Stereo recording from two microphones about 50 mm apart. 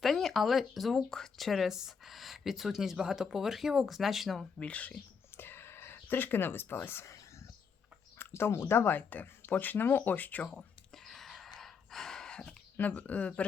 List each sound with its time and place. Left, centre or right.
0.0 s speech: centre
4.6 s speech: left
5.4 s a sound: left
8.2 s speech: left
9.0 s speech: left
10.9 s a sound: centre
11.5 s gasp: centre
13.0 s speech: left